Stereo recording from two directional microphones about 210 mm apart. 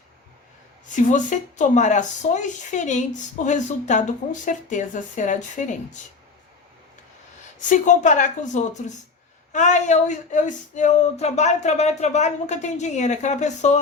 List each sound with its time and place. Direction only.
0.9 s speech: 35° left (ahead or behind)
7.7 s speech: 35° left (ahead or behind)